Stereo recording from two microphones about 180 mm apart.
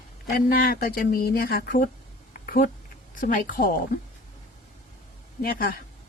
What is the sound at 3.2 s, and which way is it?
Speech, 50° left (ahead or behind).